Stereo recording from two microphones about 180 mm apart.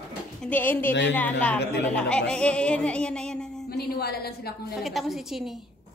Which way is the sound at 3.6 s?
60° left (ahead or behind).